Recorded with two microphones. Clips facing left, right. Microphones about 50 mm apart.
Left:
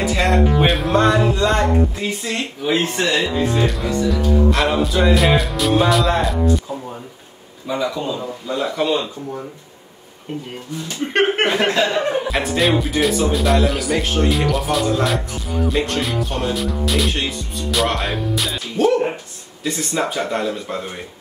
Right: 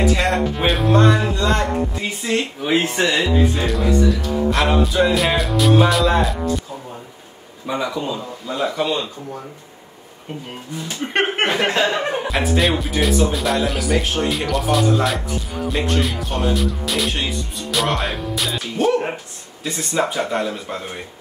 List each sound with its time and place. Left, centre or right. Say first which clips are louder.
0.0 s music: left 1 dB; centre
2.0 s speech: right 2 dB; centre
3.6 s speech: right 2 dB; centre
7.7 s speech: left 1 dB; centre
10.9 s speech: left 3 dB; centre